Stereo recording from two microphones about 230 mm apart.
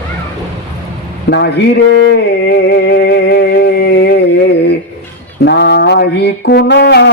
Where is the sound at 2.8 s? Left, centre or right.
Left.